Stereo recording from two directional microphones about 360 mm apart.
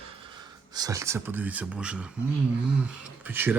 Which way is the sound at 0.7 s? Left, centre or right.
Centre.